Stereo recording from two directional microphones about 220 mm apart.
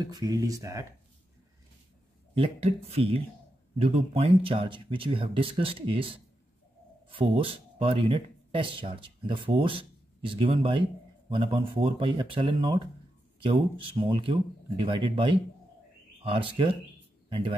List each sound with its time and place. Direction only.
0.0 s speech: 20° right (ahead or behind)
2.3 s a man's voice: 25° right (ahead or behind)